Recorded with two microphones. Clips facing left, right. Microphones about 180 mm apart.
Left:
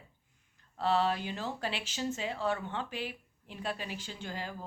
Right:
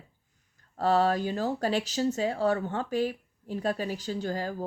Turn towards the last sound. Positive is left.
turn(degrees=-40)  # may be behind; listen again after turning